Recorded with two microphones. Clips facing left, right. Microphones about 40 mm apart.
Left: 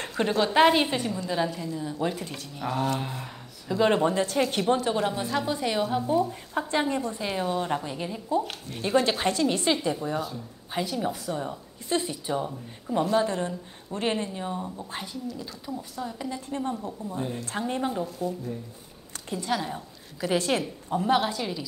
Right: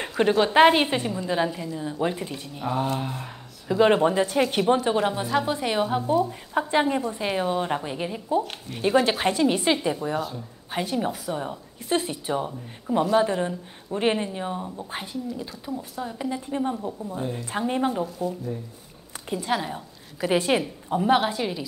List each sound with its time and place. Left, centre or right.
0.1 s a woman's voice: centre
2.6 s a sound: centre
3.6 s a woman's voice: centre
10.8 s a woman's voice: right
17.5 s a woman's voice: centre
19.2 s a woman's voice: centre